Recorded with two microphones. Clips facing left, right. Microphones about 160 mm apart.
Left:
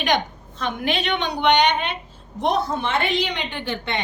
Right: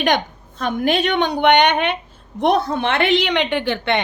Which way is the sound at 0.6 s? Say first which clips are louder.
Right 6 dB; 45° right (ahead or behind).